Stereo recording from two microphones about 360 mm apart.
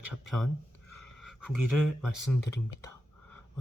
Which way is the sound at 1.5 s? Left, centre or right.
Right.